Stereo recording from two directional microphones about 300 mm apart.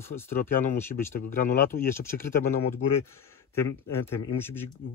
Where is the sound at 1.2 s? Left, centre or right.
Left.